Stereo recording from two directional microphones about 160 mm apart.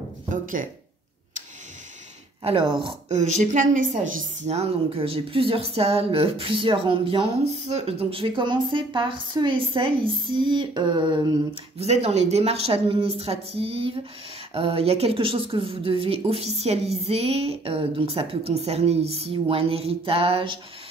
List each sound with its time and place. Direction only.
0.3 s speech: 55° right (ahead or behind)
2.4 s speech: 30° right (ahead or behind)
3.1 s speech: 50° right (ahead or behind); by 11.1 s 30° right (ahead or behind)
11.8 s speech: 40° right (ahead or behind)